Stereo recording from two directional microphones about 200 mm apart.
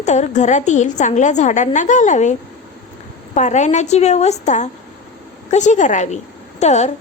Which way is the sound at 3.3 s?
35° left (ahead or behind).